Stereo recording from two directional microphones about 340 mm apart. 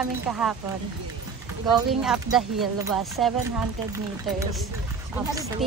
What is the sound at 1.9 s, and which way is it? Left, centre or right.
A child's voice, centre.